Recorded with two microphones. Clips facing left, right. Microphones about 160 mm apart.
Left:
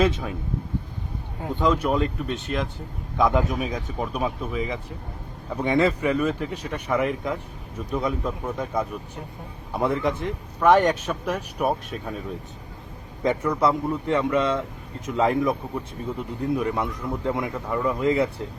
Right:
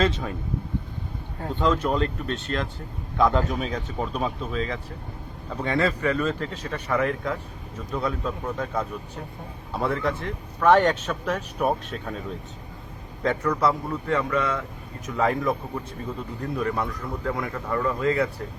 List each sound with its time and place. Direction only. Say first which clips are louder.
0.0 s speech: left 2 dB; 5° left (ahead or behind)
1.4 s speech: left 1 dB; 10° left (ahead or behind)
13.2 s a man's voice: left 1 dB; 20° left (ahead or behind)